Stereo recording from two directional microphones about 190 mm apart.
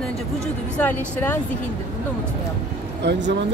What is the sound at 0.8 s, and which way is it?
Speech, 10° left (ahead or behind).